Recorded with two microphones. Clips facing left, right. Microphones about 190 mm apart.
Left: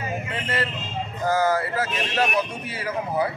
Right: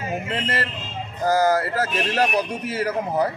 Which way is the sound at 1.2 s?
40° right (ahead or behind).